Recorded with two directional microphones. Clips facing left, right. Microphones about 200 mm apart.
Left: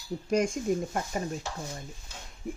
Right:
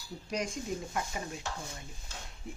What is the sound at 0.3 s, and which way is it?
Speech, 50° left (ahead or behind).